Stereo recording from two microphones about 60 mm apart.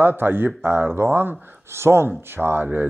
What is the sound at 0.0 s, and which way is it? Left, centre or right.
Speech, right.